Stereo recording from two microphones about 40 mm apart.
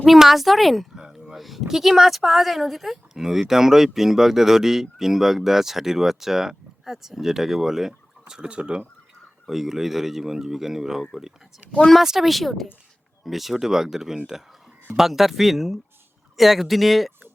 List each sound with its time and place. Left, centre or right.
0.2 s speech: centre
8.4 s speech: right
9.5 s speech: centre
12.3 s speech: centre